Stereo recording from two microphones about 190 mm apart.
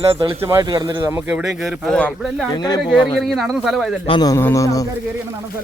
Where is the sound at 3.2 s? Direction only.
Centre (ahead or behind).